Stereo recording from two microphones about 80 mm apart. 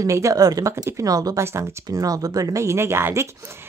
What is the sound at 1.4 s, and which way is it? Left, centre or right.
Speech, right.